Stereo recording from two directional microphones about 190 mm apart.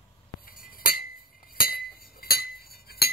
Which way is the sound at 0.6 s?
50° left (ahead or behind).